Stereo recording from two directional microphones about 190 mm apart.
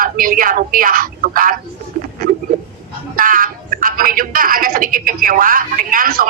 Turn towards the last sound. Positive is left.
turn(degrees=-50)  # may be behind; listen again after turning